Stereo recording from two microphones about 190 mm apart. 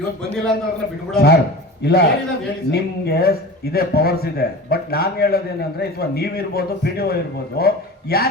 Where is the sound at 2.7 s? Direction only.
55° left (ahead or behind).